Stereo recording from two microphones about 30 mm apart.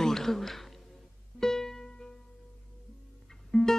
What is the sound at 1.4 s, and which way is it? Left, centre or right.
Music, centre.